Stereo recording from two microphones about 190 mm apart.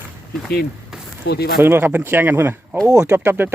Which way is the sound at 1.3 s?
60° left (ahead or behind).